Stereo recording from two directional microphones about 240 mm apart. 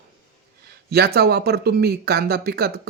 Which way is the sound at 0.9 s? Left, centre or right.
Right.